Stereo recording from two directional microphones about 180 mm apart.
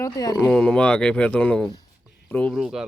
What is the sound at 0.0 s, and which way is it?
Speech, 20° left (ahead or behind).